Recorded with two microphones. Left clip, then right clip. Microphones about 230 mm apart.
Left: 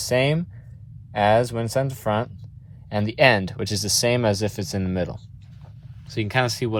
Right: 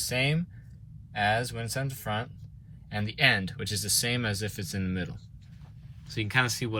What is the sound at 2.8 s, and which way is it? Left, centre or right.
Speech, left.